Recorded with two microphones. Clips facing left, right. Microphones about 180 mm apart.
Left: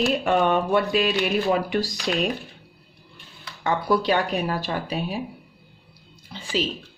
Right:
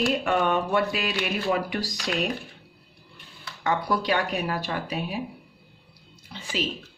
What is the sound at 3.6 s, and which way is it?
Speech, 30° left (ahead or behind).